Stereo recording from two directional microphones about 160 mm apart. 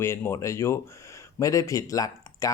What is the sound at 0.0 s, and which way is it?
Speech, 15° left (ahead or behind).